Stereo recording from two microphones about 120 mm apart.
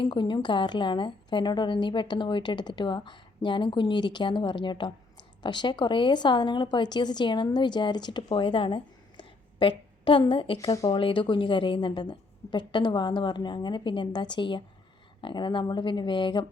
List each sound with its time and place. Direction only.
0.0 s speech: 40° left (ahead or behind)
10.7 s speech: 30° left (ahead or behind)
10.9 s speech: 45° left (ahead or behind)